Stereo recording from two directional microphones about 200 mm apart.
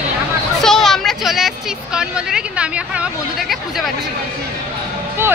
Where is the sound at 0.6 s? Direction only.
Centre (ahead or behind).